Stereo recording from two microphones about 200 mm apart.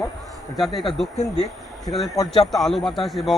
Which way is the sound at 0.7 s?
25° left (ahead or behind).